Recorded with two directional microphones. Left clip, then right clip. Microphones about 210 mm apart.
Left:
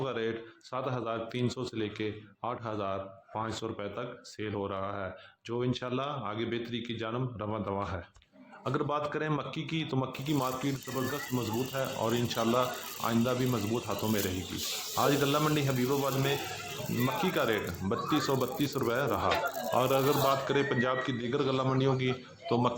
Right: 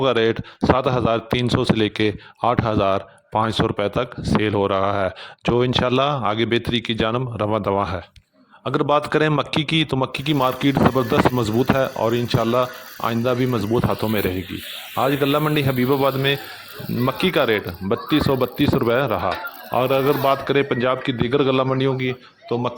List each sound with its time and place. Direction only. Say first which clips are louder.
0.0 s a man's voice: right 15 dB; 50° right (ahead or behind)